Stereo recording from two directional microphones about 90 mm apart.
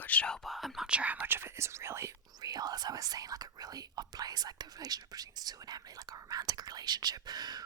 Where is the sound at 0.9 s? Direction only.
15° right (ahead or behind); by 2.2 s 30° right (ahead or behind).